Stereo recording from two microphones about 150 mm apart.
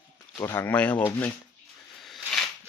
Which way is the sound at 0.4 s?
15° left (ahead or behind).